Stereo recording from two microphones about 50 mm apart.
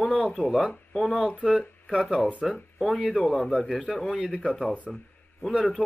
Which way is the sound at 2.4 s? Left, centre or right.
Centre.